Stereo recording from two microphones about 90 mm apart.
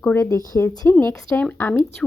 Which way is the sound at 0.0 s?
25° left (ahead or behind).